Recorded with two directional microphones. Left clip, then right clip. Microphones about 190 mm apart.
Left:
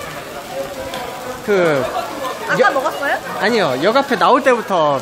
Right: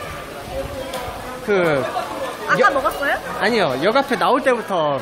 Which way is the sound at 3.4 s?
10° left (ahead or behind).